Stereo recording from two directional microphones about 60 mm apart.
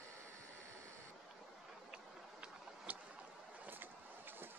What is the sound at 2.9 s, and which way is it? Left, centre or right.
Boat, right.